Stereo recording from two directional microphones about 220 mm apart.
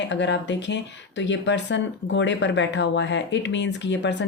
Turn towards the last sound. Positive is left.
turn(degrees=55)  # may be behind; listen again after turning